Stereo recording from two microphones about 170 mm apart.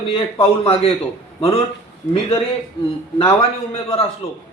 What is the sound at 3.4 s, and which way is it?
Speech, 35° left (ahead or behind).